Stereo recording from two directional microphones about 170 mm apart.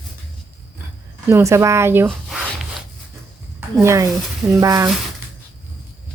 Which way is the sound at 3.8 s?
20° right (ahead or behind).